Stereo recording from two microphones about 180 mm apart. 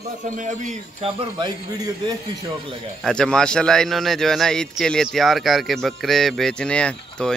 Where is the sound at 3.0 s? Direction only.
5° left (ahead or behind).